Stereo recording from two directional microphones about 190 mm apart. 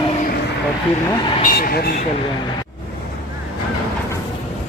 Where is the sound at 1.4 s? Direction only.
50° left (ahead or behind).